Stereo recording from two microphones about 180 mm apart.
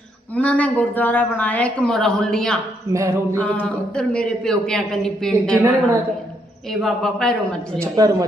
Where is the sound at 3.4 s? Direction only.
5° left (ahead or behind).